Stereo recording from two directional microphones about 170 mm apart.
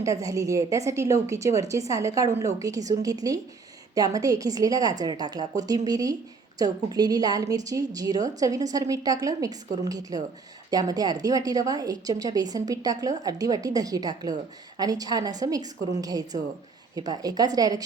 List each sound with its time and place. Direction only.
0.0 s a woman's voice: 20° right (ahead or behind)